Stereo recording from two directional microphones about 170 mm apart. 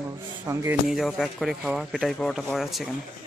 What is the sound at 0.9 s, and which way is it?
Speech, centre (ahead or behind).